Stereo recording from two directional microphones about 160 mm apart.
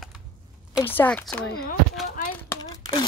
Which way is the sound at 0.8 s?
10° left (ahead or behind).